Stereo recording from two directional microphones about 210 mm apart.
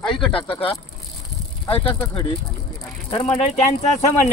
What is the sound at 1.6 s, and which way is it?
Speech, 25° left (ahead or behind).